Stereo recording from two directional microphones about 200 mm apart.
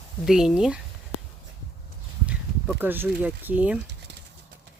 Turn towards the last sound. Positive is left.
turn(degrees=-10)  # may be behind; listen again after turning